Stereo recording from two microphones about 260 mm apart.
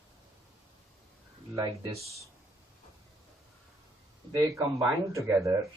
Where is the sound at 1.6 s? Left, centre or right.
Centre.